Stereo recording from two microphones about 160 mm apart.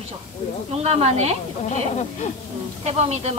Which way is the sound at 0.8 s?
40° right (ahead or behind).